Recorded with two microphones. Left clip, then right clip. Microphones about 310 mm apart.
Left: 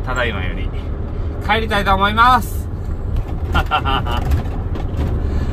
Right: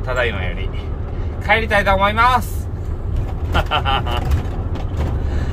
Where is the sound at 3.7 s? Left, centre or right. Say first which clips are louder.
Left 1 dB; centre.